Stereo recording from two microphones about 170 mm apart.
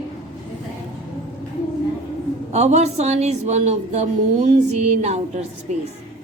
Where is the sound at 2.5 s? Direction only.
40° right (ahead or behind).